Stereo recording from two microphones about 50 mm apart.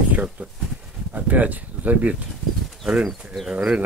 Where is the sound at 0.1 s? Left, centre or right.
Right.